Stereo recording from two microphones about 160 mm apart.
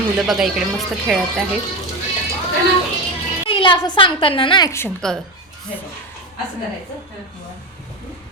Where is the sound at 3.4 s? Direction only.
30° left (ahead or behind).